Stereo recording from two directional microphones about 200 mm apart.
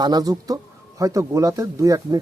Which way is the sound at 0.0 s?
20° right (ahead or behind).